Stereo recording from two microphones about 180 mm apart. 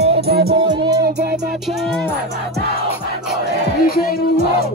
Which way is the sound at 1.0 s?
60° right (ahead or behind).